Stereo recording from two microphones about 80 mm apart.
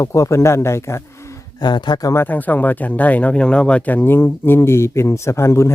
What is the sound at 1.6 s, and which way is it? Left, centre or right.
Speech, left.